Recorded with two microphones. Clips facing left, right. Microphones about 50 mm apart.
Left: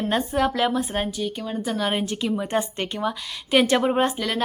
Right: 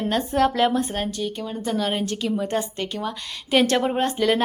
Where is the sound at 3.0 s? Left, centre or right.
Centre.